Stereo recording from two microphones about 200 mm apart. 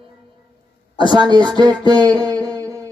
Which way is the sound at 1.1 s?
20° right (ahead or behind).